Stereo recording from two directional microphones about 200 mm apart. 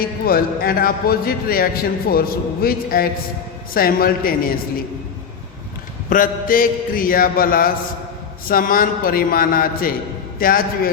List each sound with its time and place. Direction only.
0.0 s a man's voice: 45° left (ahead or behind)
6.1 s a man's voice: 45° left (ahead or behind)